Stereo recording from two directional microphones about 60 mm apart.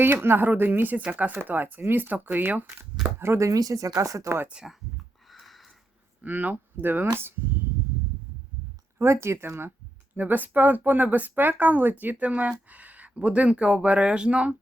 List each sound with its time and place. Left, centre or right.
0.0 s speech: right
3.2 s speech: right
5.3 s sniff: centre
6.2 s speech: right
9.2 s speech: right
10.2 s speech: right